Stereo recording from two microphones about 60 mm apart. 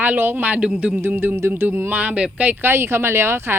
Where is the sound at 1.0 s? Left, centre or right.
Right.